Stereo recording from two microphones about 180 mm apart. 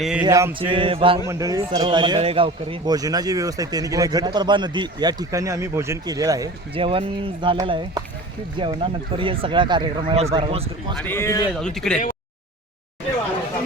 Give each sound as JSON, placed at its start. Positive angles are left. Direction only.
{"t": 0.0, "sound": "speech", "side_deg": -5}
{"t": 0.3, "sound": "mantra", "side_deg": -15}
{"t": 0.7, "sound": "a man's voice", "side_deg": -30}
{"t": 1.3, "sound": "a man's voice", "side_deg": -15}
{"t": 6.7, "sound": "a man's voice", "side_deg": -30}
{"t": 10.9, "sound": "speech", "side_deg": 10}
{"t": 11.6, "sound": "speech", "side_deg": 5}